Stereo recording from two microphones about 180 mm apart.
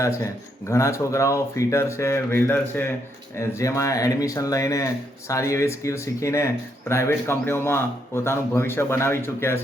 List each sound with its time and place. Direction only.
0.7 s speech: 15° left (ahead or behind)